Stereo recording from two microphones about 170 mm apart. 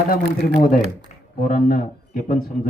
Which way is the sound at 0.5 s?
55° left (ahead or behind).